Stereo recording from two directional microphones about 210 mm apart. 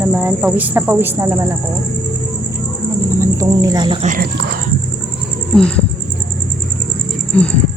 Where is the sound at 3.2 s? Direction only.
15° right (ahead or behind).